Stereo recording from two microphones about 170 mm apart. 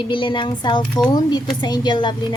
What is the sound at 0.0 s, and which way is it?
A child's voice, 30° left (ahead or behind).